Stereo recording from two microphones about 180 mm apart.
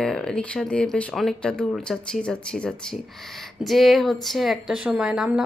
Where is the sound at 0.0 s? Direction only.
5° left (ahead or behind).